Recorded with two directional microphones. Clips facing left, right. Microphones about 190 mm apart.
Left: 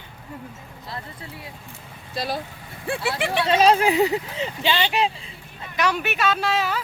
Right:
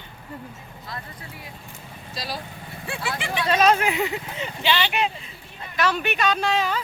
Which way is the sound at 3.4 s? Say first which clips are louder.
Left 2 dB; 30° left (ahead or behind).